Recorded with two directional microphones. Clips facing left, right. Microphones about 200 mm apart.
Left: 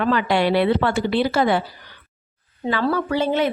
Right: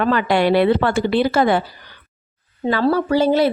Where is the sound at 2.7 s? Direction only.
35° right (ahead or behind).